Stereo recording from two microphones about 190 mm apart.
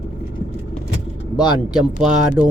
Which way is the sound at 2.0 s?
5° right (ahead or behind).